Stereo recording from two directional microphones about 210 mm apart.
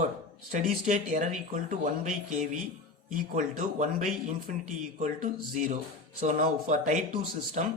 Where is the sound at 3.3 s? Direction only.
35° right (ahead or behind).